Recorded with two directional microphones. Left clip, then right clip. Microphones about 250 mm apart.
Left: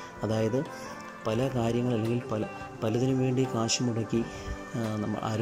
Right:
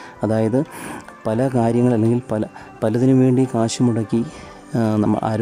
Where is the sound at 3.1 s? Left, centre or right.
Right.